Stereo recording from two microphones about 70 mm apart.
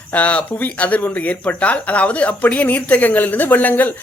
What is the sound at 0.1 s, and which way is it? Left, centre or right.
Speech, centre.